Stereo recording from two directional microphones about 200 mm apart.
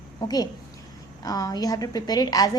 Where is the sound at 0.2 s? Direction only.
20° left (ahead or behind).